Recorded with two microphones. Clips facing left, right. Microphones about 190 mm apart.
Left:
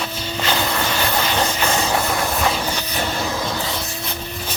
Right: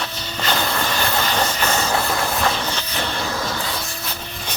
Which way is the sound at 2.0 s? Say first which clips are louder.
Left 1 dB; centre (ahead or behind).